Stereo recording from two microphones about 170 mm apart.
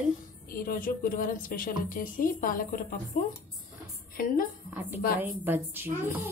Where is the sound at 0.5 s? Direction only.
55° left (ahead or behind).